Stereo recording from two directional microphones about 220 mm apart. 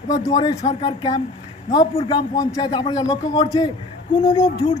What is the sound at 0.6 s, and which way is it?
A man's voice, 25° left (ahead or behind).